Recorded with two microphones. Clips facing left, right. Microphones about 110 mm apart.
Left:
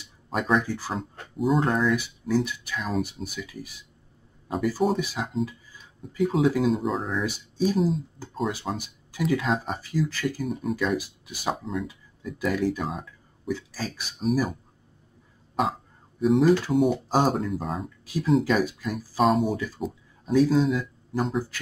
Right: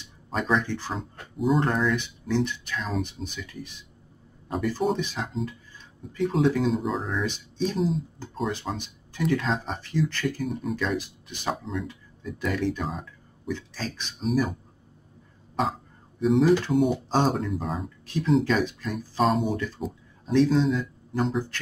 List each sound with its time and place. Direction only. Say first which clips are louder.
0.0 s speech: left 1 dB; 5° left (ahead or behind)
16.2 s speech: left 1 dB; centre (ahead or behind)